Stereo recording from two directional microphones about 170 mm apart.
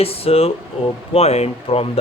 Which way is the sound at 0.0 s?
35° left (ahead or behind).